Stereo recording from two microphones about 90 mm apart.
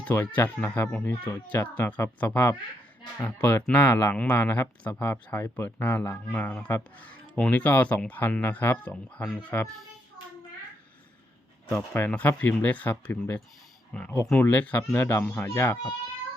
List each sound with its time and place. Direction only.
0.0 s speech: 20° left (ahead or behind)
11.9 s speech: 20° left (ahead or behind)
15.4 s speech: 30° left (ahead or behind)